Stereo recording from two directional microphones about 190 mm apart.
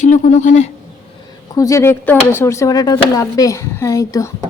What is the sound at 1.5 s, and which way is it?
Speech, 15° left (ahead or behind).